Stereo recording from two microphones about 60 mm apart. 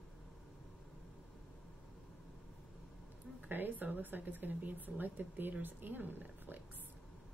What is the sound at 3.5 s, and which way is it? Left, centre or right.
Speech, right.